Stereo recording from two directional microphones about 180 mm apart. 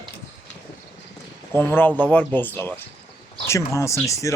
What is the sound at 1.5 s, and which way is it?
Speech, 10° left (ahead or behind).